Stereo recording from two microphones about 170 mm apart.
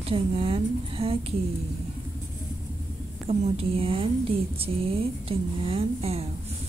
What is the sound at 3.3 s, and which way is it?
A woman's voice, 35° right (ahead or behind).